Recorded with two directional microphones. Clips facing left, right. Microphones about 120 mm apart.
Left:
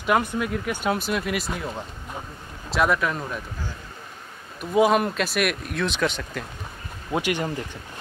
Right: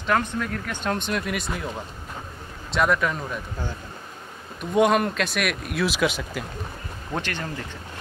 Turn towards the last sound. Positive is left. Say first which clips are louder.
# left 5 dB
turn(degrees=10)  # may be behind; listen again after turning